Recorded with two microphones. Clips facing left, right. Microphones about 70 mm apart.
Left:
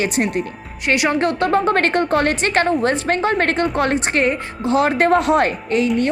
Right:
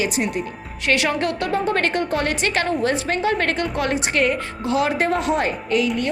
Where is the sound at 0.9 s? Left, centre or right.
Left.